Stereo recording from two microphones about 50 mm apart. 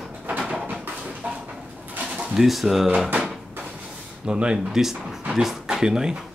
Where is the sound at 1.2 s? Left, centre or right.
Right.